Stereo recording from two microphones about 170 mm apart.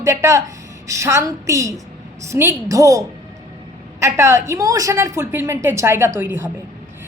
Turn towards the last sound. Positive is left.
turn(degrees=-15)  # may be behind; listen again after turning